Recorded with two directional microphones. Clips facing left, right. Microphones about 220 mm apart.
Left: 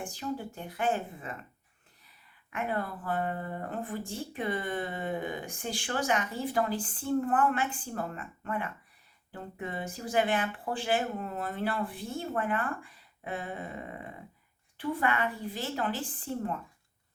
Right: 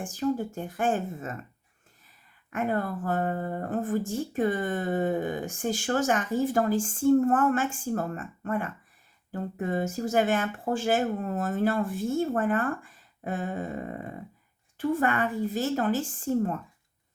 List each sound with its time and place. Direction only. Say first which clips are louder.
0.0 s speech: right 8 dB; 45° right (ahead or behind)
2.5 s speech: right 5 dB; 45° right (ahead or behind)